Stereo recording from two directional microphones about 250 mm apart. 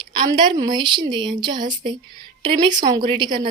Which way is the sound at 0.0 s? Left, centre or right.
Centre.